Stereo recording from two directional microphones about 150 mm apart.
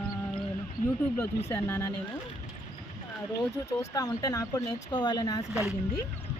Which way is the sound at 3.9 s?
25° left (ahead or behind).